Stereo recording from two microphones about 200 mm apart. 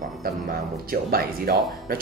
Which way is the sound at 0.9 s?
50° right (ahead or behind).